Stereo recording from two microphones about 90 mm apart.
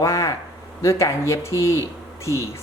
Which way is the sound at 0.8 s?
35° left (ahead or behind).